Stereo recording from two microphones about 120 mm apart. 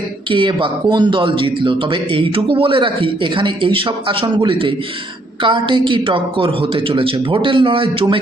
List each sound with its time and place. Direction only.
0.3 s speech: 45° right (ahead or behind)